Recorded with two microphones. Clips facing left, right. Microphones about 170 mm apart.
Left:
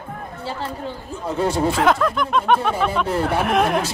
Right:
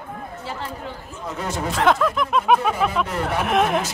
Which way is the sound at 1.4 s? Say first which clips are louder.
Left 7 dB; 30° left (ahead or behind).